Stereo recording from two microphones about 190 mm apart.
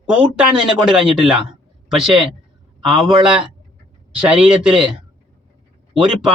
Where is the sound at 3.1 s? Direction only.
25° right (ahead or behind).